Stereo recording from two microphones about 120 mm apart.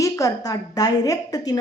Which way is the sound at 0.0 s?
30° left (ahead or behind).